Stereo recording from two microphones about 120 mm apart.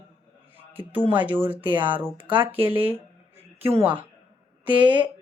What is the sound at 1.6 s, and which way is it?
Speech, 40° right (ahead or behind).